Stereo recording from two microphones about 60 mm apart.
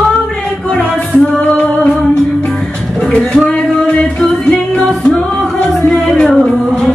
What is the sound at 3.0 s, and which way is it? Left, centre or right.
Music, centre.